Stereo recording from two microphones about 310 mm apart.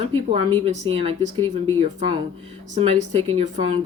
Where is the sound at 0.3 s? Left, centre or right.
Centre.